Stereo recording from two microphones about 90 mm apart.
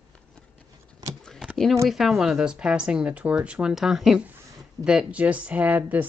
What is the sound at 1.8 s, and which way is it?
Speech, centre (ahead or behind).